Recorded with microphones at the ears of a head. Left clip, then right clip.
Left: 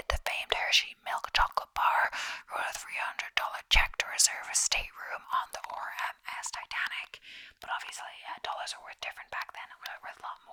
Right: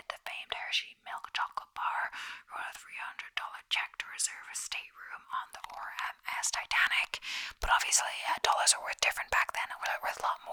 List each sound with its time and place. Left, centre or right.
0.1 s whispering: left
6.4 s whispering: right